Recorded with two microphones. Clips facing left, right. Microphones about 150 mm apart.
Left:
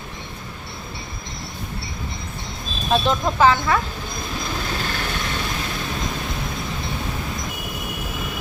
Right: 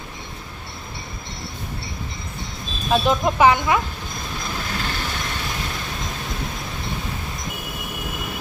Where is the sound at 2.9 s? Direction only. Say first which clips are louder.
Right 1 dB; 10° right (ahead or behind).